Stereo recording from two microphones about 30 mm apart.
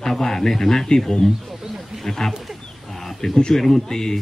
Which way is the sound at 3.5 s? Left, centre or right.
Centre.